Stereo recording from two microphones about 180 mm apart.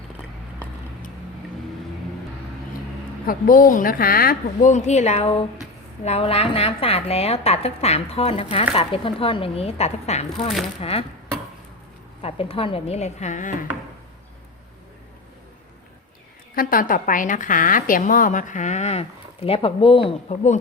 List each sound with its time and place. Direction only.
3.2 s a woman's voice: 50° left (ahead or behind); by 11.0 s 30° left (ahead or behind)
12.2 s a woman's voice: 30° left (ahead or behind)
16.6 s a woman's voice: 50° left (ahead or behind); by 20.6 s 35° left (ahead or behind)